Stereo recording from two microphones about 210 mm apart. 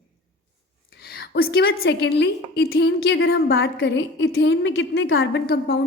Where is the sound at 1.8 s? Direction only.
55° left (ahead or behind).